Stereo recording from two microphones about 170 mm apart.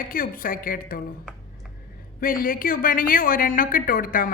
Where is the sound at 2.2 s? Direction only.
55° left (ahead or behind).